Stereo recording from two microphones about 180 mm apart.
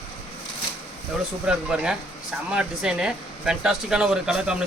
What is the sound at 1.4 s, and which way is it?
Speech, 5° right (ahead or behind).